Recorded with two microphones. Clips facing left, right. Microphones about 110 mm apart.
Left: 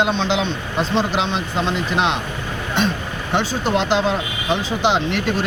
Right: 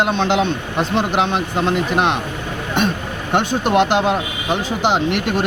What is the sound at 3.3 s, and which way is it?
Speech, 55° right (ahead or behind).